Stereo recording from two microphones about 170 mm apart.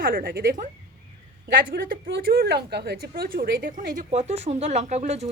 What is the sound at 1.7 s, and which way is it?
A woman's voice, 60° right (ahead or behind).